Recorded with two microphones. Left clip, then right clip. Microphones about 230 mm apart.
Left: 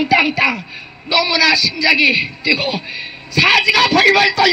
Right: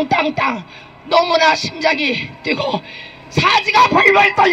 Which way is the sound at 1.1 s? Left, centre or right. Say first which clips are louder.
Right 1 dB; right.